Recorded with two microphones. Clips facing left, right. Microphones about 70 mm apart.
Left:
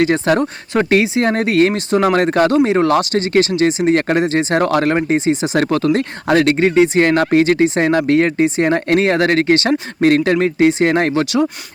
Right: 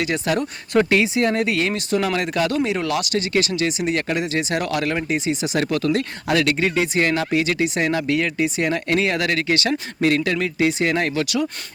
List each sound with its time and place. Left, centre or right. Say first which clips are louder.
0.0 s speech: left 8 dB; left
7.1 s speech: left 8 dB; left